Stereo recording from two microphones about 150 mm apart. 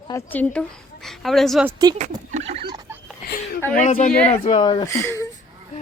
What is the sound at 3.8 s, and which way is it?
Speech, 55° left (ahead or behind).